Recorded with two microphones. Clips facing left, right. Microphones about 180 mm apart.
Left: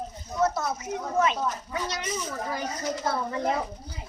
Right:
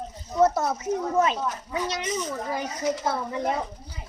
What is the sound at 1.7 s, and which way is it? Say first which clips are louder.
Speech: right 3 dB; 20° right (ahead or behind).